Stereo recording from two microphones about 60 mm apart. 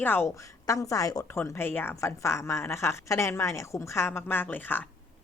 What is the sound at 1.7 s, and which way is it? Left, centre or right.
Speech, left.